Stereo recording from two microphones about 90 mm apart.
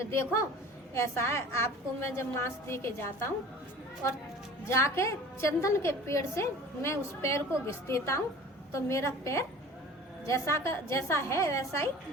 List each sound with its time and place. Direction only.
0.1 s a woman's voice: 30° left (ahead or behind)
4.6 s a woman's voice: 30° left (ahead or behind)